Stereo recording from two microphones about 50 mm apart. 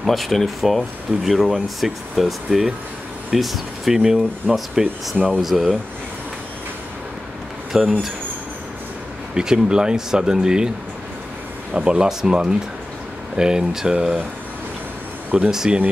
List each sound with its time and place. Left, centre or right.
0.0 s speech: centre
7.7 s speech: centre
9.3 s speech: centre
11.7 s speech: centre
15.5 s speech: centre